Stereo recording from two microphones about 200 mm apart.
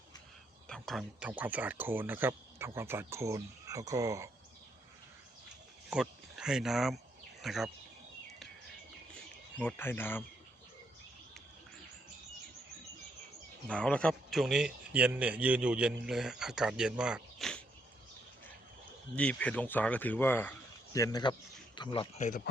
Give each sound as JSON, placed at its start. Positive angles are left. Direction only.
{"t": 0.7, "sound": "speech", "side_deg": 0}
{"t": 5.9, "sound": "speech", "side_deg": -5}
{"t": 9.6, "sound": "speech", "side_deg": 10}
{"t": 13.7, "sound": "speech", "side_deg": 5}
{"t": 19.1, "sound": "speech", "side_deg": 5}